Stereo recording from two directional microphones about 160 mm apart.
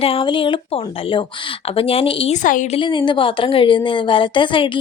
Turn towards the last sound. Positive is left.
turn(degrees=30)  # may be behind; listen again after turning